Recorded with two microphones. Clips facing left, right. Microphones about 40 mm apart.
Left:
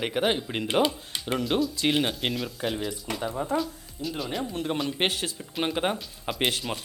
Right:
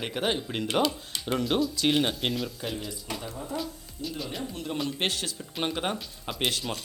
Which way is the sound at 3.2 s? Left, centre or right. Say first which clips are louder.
Left 8 dB; left.